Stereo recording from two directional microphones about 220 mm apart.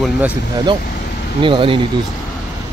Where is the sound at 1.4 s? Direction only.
25° right (ahead or behind).